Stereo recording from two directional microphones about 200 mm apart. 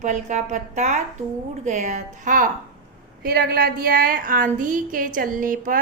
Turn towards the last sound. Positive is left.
turn(degrees=-45)  # may be behind; listen again after turning